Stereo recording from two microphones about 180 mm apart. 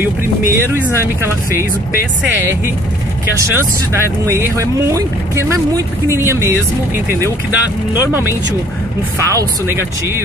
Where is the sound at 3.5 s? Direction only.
15° right (ahead or behind).